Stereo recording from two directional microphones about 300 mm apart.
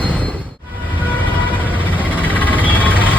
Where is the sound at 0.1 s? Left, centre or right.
Centre.